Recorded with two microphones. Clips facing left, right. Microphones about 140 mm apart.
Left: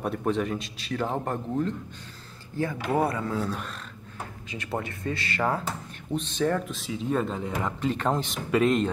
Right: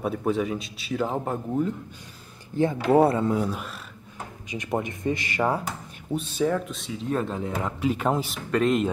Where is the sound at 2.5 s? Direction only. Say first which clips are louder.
Right 7 dB; 25° right (ahead or behind).